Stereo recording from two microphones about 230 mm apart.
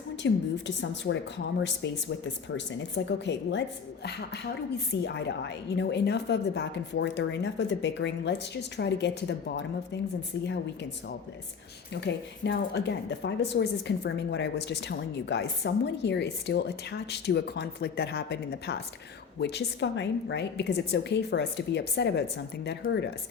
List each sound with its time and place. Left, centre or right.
0.2 s a woman's voice: left
5.0 s a woman's voice: left
11.9 s a woman's voice: left